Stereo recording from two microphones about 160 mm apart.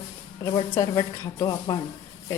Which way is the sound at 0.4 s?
25° left (ahead or behind).